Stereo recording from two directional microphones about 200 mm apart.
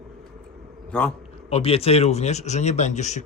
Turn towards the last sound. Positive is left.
turn(degrees=35)  # may be behind; listen again after turning